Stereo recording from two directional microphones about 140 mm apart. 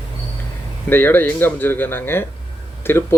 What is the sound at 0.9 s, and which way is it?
Speech, 15° left (ahead or behind).